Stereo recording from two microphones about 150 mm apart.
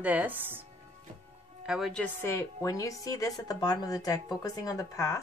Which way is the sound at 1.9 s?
10° left (ahead or behind).